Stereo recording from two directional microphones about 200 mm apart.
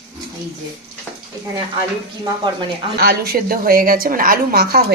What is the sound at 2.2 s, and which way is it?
Speech, 20° right (ahead or behind).